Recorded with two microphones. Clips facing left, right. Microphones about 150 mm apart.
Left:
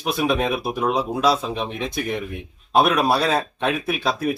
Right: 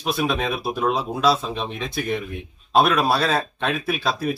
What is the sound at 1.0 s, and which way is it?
A man's voice, 15° left (ahead or behind).